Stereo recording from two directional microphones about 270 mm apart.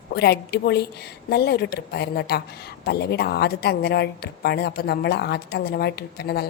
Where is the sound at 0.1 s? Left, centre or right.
Left.